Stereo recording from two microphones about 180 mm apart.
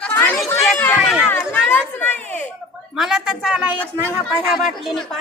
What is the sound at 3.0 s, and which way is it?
A woman's voice, 5° right (ahead or behind).